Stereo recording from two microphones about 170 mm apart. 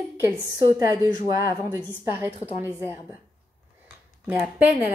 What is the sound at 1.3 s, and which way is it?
Speech, 20° right (ahead or behind).